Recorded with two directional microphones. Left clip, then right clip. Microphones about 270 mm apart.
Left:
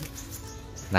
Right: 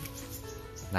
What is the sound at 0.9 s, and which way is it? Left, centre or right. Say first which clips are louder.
Speech: left 9 dB; centre.